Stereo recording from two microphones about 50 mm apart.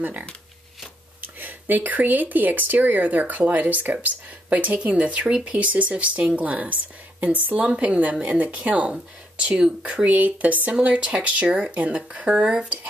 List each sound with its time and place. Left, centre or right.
0.0 s speech: right
10.0 s speech: right